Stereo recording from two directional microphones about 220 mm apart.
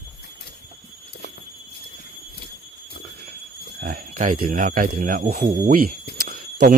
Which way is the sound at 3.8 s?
40° right (ahead or behind).